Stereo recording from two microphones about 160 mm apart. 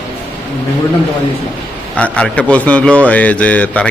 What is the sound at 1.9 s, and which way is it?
A man's voice, 5° left (ahead or behind).